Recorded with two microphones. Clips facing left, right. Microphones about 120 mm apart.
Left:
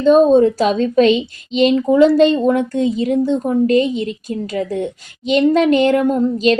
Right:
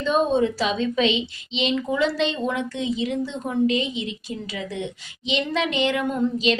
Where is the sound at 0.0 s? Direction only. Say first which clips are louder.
Left 10 dB; 45° left (ahead or behind).